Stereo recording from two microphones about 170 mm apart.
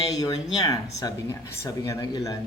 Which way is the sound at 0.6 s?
20° left (ahead or behind).